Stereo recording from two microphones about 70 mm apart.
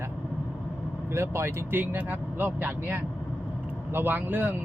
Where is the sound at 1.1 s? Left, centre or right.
Right.